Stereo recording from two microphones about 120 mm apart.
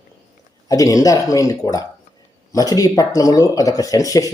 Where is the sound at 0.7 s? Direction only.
30° left (ahead or behind).